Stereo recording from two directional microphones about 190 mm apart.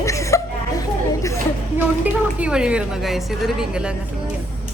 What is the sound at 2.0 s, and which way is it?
A woman's voice, 5° right (ahead or behind).